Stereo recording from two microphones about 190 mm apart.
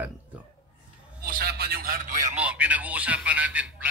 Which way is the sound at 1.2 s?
50° right (ahead or behind).